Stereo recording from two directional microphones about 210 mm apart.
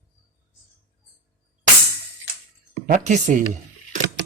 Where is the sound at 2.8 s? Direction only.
35° right (ahead or behind).